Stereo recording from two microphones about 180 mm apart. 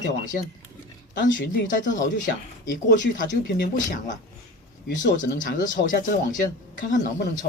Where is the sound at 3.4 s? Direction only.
50° left (ahead or behind).